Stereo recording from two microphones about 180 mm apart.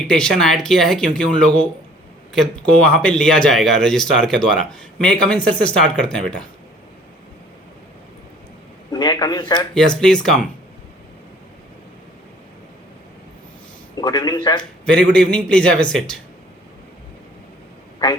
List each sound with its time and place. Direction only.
0.1 s speech: 5° left (ahead or behind)
8.9 s a man's voice: 20° left (ahead or behind)
9.7 s speech: 5° left (ahead or behind)
13.9 s a man's voice: 20° left (ahead or behind)
14.6 s speech: 5° left (ahead or behind)